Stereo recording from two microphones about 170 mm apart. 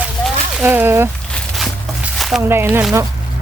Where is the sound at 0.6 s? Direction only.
10° right (ahead or behind).